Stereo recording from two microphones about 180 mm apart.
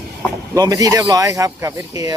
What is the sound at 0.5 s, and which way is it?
Speech, 20° right (ahead or behind).